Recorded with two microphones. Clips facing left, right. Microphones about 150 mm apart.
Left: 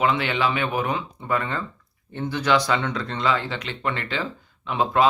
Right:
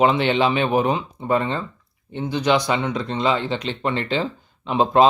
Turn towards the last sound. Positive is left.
turn(degrees=-25)  # may be behind; listen again after turning